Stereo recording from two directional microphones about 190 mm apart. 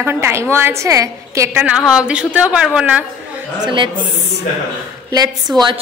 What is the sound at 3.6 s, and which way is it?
Speech, 25° right (ahead or behind).